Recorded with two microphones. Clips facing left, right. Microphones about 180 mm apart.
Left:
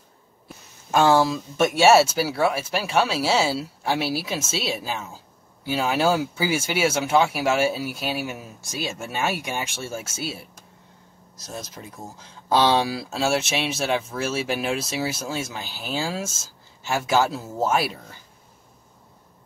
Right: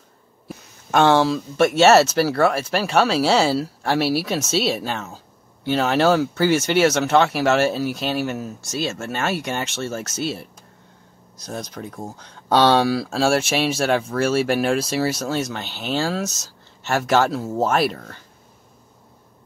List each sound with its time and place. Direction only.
0.9 s speech: 70° right (ahead or behind)
1.3 s speech: 10° left (ahead or behind)
5.1 s a sound: 5° left (ahead or behind)
6.1 s speech: 5° left (ahead or behind)
11.6 s speech: 5° left (ahead or behind)